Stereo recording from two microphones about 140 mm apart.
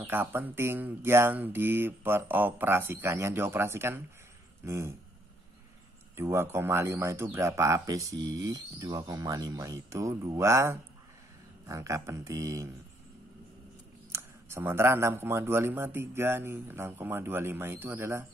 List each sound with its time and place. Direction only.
0.0 s speech: 15° right (ahead or behind)
6.1 s speech: 20° right (ahead or behind)
14.1 s speech: 15° right (ahead or behind)